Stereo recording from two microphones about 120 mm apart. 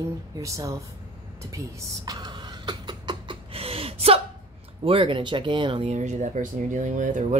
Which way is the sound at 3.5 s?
55° right (ahead or behind).